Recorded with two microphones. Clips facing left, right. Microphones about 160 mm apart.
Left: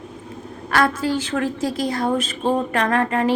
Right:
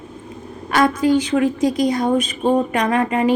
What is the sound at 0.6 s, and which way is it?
A woman's voice, 15° right (ahead or behind).